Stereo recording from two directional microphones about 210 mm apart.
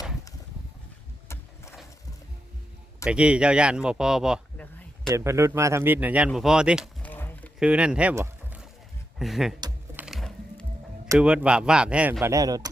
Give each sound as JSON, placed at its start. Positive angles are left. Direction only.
{"t": 3.0, "sound": "speech", "side_deg": -5}
{"t": 5.1, "sound": "speech", "side_deg": -15}
{"t": 7.0, "sound": "a sound", "side_deg": 10}
{"t": 7.6, "sound": "speech", "side_deg": -5}
{"t": 9.1, "sound": "a sound", "side_deg": 0}
{"t": 9.6, "sound": "typing", "side_deg": -20}
{"t": 10.0, "sound": "music", "side_deg": 0}
{"t": 11.1, "sound": "speech", "side_deg": -5}